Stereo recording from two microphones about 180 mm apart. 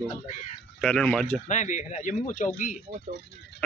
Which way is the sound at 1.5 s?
40° left (ahead or behind).